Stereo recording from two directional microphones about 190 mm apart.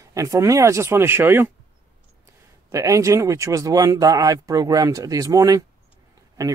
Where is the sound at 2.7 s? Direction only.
15° right (ahead or behind).